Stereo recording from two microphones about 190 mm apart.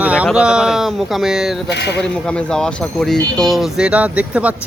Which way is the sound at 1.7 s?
65° left (ahead or behind).